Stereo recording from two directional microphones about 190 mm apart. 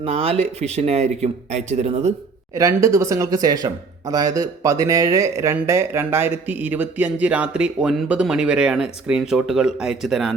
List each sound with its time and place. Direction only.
0.0 s speech: 30° right (ahead or behind)
2.6 s speech: 15° right (ahead or behind); by 10.3 s centre (ahead or behind)